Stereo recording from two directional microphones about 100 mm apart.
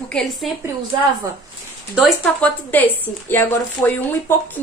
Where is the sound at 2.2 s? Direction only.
15° left (ahead or behind).